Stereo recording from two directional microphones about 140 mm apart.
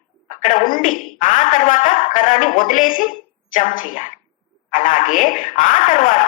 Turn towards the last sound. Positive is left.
turn(degrees=65)  # may be behind; listen again after turning